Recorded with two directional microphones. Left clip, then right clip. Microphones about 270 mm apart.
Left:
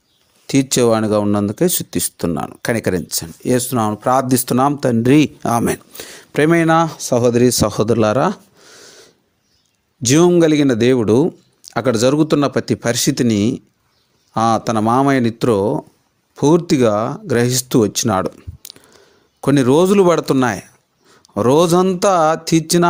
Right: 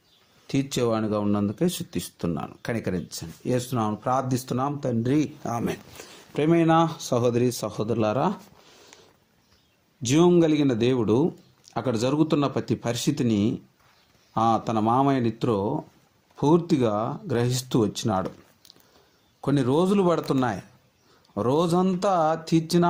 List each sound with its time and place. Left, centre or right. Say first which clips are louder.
0.4 s speech: left 11 dB; left
10.0 s speech: left 8 dB; left